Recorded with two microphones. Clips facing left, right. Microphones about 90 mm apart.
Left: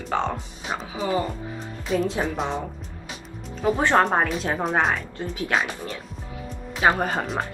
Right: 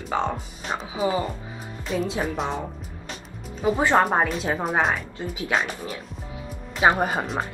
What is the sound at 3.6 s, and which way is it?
A woman's voice, 10° right (ahead or behind).